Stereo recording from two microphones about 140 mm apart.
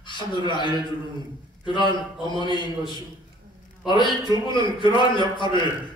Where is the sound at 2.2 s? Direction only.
35° left (ahead or behind).